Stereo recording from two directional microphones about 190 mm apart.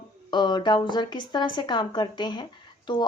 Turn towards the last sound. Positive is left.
turn(degrees=25)  # may be behind; listen again after turning